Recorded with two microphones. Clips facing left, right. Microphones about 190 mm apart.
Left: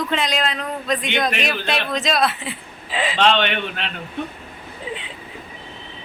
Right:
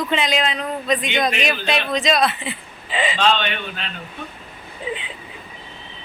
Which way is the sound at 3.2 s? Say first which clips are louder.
Left 4 dB; 70° left (ahead or behind).